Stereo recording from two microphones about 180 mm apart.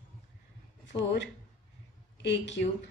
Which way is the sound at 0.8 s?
80° left.